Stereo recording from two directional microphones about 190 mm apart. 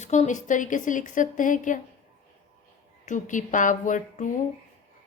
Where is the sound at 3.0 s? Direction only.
40° left (ahead or behind).